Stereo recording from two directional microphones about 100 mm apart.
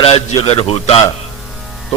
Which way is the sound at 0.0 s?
70° left (ahead or behind).